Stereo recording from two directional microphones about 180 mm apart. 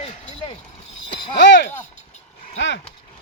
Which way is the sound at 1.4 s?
80° left.